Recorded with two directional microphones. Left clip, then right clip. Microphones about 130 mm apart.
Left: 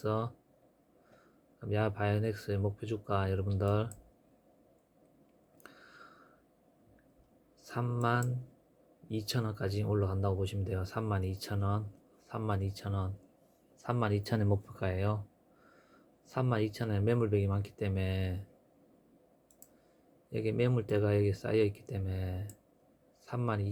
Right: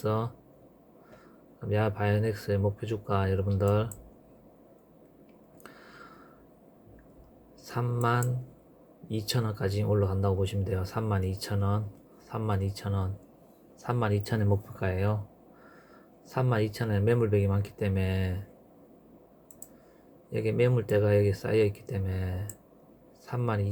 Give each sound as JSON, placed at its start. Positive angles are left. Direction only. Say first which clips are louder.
{"t": 0.0, "sound": "speech", "louder": "right 4 dB", "side_deg": 20}
{"t": 1.7, "sound": "speech", "louder": "right 4 dB", "side_deg": 20}
{"t": 5.6, "sound": "a sound", "louder": "right 5 dB", "side_deg": 20}
{"t": 7.6, "sound": "speech", "louder": "right 4 dB", "side_deg": 20}
{"t": 16.3, "sound": "speech", "louder": "right 4 dB", "side_deg": 20}
{"t": 20.3, "sound": "speech", "louder": "right 6 dB", "side_deg": 25}